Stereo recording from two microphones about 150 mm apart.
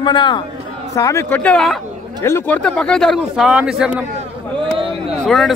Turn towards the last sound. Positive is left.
turn(degrees=0)  # may be behind; listen again after turning